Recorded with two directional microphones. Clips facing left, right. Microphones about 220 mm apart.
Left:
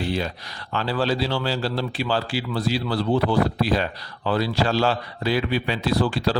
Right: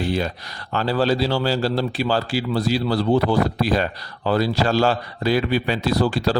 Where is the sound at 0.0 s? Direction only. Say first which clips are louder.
Right 3 dB; 45° right (ahead or behind).